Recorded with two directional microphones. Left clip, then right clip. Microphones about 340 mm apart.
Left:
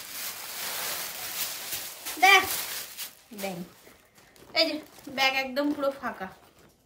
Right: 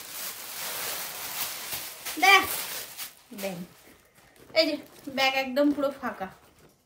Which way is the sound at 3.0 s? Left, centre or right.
Centre.